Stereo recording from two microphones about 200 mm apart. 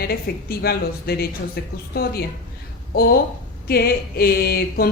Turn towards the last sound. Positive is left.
turn(degrees=50)  # may be behind; listen again after turning